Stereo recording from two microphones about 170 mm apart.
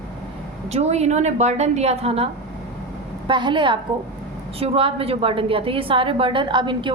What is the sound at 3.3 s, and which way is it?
A woman's voice, 25° right (ahead or behind).